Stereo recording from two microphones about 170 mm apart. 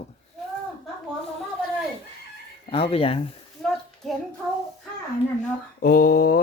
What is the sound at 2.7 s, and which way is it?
Speech, 35° left (ahead or behind).